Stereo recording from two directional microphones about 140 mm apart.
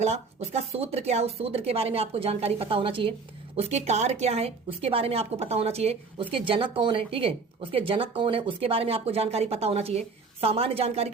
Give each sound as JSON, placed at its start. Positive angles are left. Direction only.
{"t": 0.0, "sound": "speech", "side_deg": -50}
{"t": 3.5, "sound": "speech", "side_deg": -50}